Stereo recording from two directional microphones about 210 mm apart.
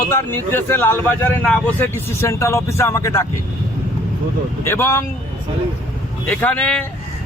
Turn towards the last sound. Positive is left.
turn(degrees=5)  # may be behind; listen again after turning